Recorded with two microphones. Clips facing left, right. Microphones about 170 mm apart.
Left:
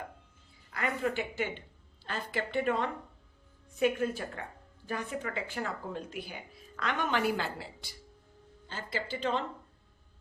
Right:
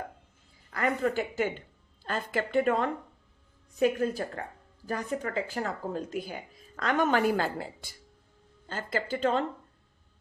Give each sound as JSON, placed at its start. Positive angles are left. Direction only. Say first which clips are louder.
{"t": 0.7, "sound": "speech", "louder": "right 4 dB", "side_deg": -45}